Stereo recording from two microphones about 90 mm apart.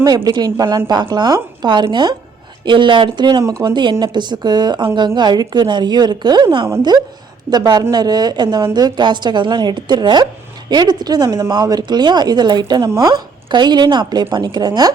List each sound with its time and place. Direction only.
0.0 s a woman's voice: 50° right (ahead or behind)
13.0 s a woman's voice: 40° right (ahead or behind)
13.5 s a woman's voice: 55° right (ahead or behind)